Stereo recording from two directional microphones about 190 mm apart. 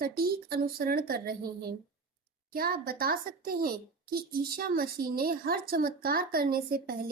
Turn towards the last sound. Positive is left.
turn(degrees=-50)  # may be behind; listen again after turning